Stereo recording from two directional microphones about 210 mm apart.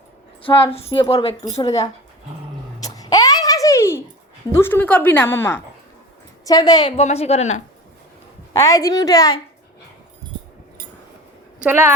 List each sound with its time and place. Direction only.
0.4 s a woman's voice: 25° left (ahead or behind)
2.8 s a sound: 15° left (ahead or behind)
4.5 s a woman's voice: 10° left (ahead or behind); by 7.6 s 35° left (ahead or behind)
8.5 s a woman's voice: 15° left (ahead or behind)
11.6 s speech: 10° right (ahead or behind)